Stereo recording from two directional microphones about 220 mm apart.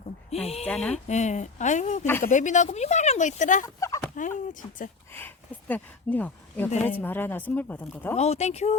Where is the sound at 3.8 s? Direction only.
15° left (ahead or behind).